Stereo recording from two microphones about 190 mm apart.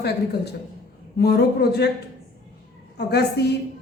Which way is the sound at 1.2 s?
55° left (ahead or behind).